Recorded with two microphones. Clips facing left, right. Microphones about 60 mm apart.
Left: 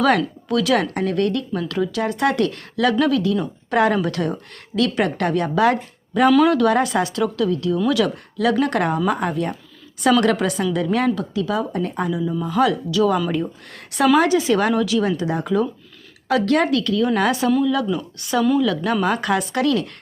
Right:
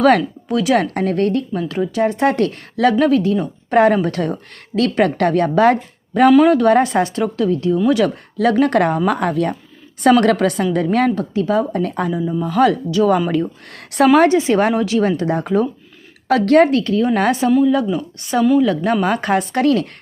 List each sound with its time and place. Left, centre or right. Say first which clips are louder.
0.0 s speech: right 4 dB; right
0.4 s speech: right 2 dB; right
0.9 s a woman's voice: right 3 dB; right
6.3 s a woman's voice: right 4 dB; right
10.0 s a woman's voice: right 4 dB; right
11.9 s speech: right 3 dB; right
12.2 s speech: right 3 dB; centre
12.5 s a woman's voice: right 4 dB; right
13.7 s a woman's voice: right 5 dB; right
14.2 s speech: right 4 dB; right
14.8 s a woman's voice: right 3 dB; right